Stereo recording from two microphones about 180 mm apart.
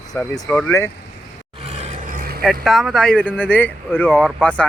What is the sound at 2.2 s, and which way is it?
Vehicle, 55° right (ahead or behind).